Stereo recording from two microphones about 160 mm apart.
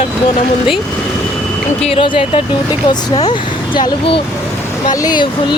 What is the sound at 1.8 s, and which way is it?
Speech, 35° left (ahead or behind).